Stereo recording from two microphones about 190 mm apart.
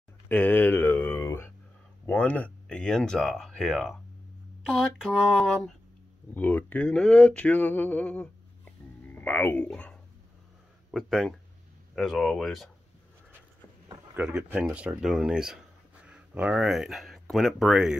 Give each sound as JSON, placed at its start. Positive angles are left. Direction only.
{"t": 0.3, "sound": "speech", "side_deg": 10}
{"t": 14.1, "sound": "speech", "side_deg": -5}